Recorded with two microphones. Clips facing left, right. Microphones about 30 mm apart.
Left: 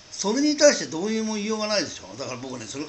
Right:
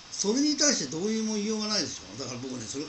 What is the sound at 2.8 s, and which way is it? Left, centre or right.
Speech, left.